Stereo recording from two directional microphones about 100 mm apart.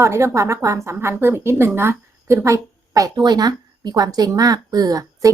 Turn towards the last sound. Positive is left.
turn(degrees=-35)  # may be behind; listen again after turning